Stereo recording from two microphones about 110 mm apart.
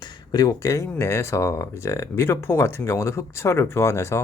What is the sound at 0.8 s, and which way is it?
Speech, 20° left (ahead or behind).